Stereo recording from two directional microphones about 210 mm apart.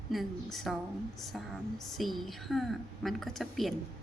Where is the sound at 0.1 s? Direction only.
Centre (ahead or behind).